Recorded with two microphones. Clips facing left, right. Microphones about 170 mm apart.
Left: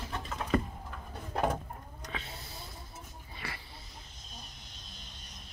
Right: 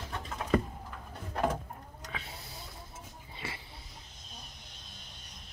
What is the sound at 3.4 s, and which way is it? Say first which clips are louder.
Wheeze: right 1 dB; 25° right (ahead or behind).